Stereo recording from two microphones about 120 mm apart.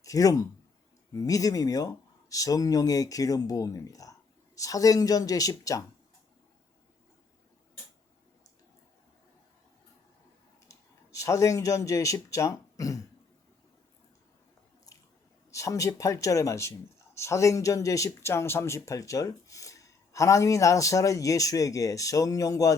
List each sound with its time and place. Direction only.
0.0 s speech: 30° left (ahead or behind)
10.7 s speech: 25° left (ahead or behind)
15.5 s speech: 25° left (ahead or behind)